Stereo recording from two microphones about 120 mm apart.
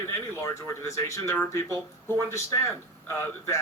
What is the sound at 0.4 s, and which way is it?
Speech, 25° left (ahead or behind).